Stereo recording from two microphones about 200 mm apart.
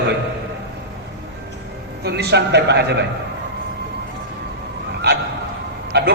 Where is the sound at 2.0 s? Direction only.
55° right (ahead or behind).